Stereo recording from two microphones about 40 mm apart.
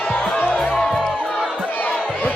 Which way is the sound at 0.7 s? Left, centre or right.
Centre.